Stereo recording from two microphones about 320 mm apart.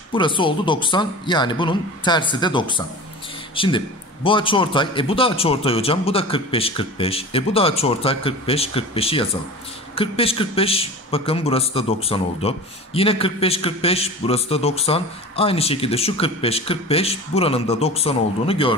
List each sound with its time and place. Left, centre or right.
0.1 s speech: centre